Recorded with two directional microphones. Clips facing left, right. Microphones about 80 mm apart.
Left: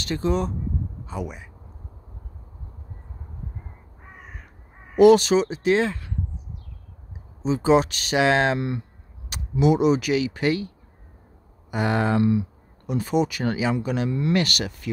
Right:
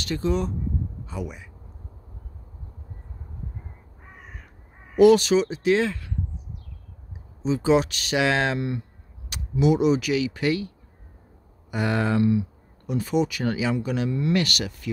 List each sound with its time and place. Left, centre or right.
0.0 s speech: left
4.9 s speech: left
7.4 s speech: left
11.7 s speech: left
12.2 s speech: left